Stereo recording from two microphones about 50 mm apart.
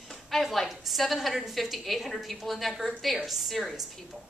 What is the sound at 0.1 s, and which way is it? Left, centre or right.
A woman's voice, centre.